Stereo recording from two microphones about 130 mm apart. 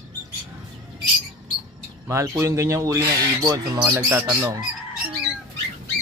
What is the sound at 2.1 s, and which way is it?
Speech, 20° right (ahead or behind).